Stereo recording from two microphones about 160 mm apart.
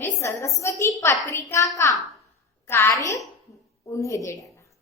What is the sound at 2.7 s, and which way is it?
A woman's voice, 15° left (ahead or behind).